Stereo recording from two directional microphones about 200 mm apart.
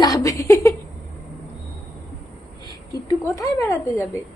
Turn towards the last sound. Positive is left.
turn(degrees=15)  # may be behind; listen again after turning